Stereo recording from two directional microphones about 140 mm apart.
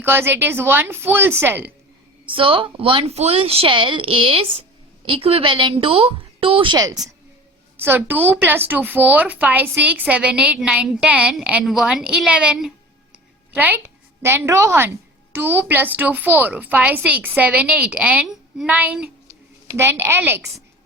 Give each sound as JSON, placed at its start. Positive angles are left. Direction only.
{"t": 0.0, "sound": "speech", "side_deg": -15}
{"t": 2.2, "sound": "a woman's voice", "side_deg": -40}
{"t": 6.7, "sound": "speech", "side_deg": -25}
{"t": 7.8, "sound": "speech", "side_deg": -15}